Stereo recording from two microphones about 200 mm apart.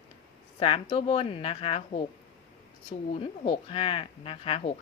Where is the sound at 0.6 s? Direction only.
30° left (ahead or behind).